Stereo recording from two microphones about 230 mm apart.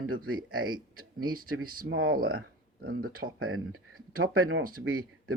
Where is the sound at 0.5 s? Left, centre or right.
Right.